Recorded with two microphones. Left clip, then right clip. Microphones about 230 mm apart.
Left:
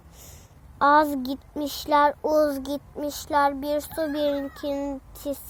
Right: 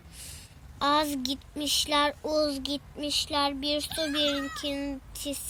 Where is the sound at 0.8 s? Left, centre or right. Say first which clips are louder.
Left 7 dB; left.